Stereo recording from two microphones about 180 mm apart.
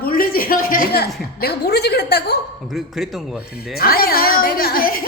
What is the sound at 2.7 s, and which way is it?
Speech, centre (ahead or behind).